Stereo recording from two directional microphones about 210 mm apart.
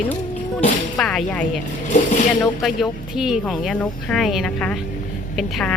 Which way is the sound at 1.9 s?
35° left (ahead or behind).